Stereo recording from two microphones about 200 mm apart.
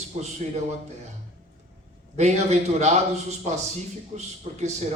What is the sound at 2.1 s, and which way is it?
A man's voice, 35° right (ahead or behind).